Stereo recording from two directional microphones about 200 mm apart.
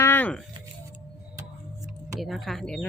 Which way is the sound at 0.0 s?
10° left (ahead or behind).